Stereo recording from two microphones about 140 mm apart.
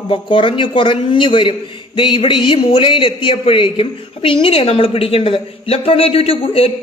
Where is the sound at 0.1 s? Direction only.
35° left (ahead or behind).